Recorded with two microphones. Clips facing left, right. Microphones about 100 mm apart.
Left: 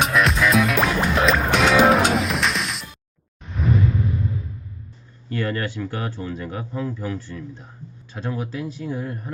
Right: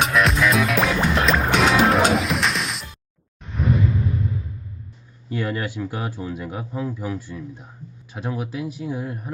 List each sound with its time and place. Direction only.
0.0 s music: centre (ahead or behind)
3.6 s a sound: centre (ahead or behind)
5.3 s speech: 10° right (ahead or behind)